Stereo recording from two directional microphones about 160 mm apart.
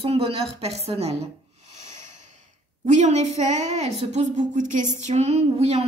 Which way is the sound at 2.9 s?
45° right (ahead or behind).